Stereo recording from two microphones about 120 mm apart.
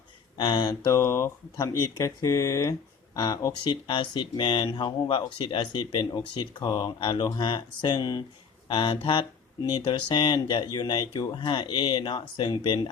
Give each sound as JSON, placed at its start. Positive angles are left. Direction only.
{"t": 0.3, "sound": "speech", "side_deg": 35}
{"t": 0.9, "sound": "speech", "side_deg": 25}
{"t": 3.6, "sound": "speech", "side_deg": 40}